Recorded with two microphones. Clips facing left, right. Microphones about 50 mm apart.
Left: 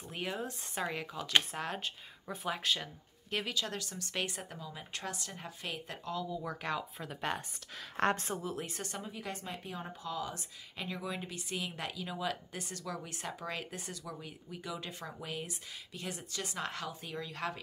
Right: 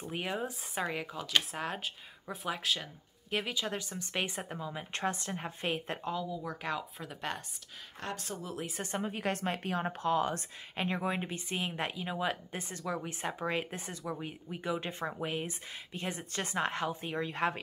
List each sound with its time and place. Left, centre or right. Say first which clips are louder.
0.1 s speech: right 2 dB; centre; by 6.1 s right
6.3 s speech: even; centre
8.0 s a woman's voice: left 9 dB; left
8.4 s speech: even; centre
9.0 s a woman's voice: right 8 dB; right